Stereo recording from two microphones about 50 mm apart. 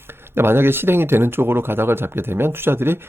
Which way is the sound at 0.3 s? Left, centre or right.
Right.